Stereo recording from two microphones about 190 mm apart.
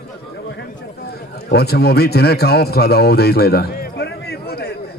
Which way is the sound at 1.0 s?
55° left (ahead or behind).